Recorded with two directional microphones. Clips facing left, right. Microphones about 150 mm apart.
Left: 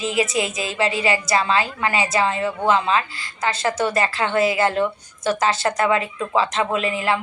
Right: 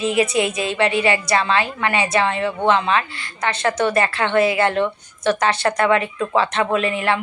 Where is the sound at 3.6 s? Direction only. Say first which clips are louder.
Right 3 dB; 25° left (ahead or behind).